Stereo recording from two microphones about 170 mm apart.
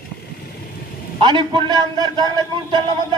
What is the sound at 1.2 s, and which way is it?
A man's voice, 25° right (ahead or behind).